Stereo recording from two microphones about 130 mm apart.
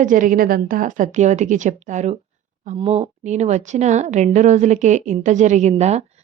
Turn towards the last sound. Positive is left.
turn(degrees=-55)  # may be behind; listen again after turning